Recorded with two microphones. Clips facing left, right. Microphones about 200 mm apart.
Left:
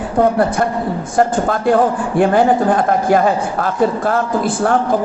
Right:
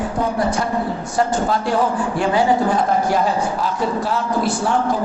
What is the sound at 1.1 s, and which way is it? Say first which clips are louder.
A man's voice: left 4 dB; 55° left (ahead or behind).